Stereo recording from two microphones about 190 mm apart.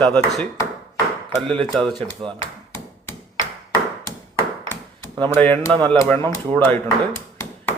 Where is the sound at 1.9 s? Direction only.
20° right (ahead or behind).